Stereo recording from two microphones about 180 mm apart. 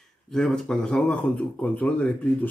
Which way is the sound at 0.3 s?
5° left (ahead or behind).